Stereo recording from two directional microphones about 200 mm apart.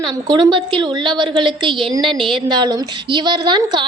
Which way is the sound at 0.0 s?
20° right (ahead or behind).